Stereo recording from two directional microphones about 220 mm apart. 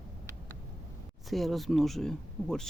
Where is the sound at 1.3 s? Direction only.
Centre (ahead or behind).